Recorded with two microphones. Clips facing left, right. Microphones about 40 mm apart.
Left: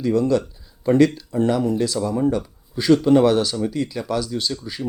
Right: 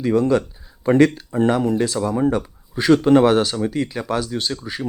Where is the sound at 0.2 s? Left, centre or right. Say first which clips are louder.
Right 1 dB; right.